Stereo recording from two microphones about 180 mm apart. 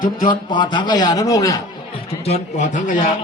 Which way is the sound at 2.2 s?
35° left (ahead or behind).